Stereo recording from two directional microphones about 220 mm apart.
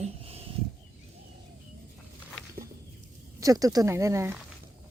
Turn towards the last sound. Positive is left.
turn(degrees=-10)  # may be behind; listen again after turning